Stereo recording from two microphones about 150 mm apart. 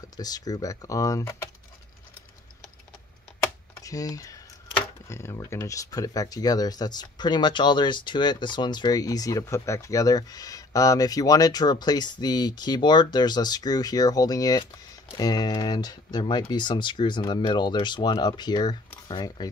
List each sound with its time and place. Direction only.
0.2 s speech: 25° left (ahead or behind)
3.8 s speech: 25° left (ahead or behind)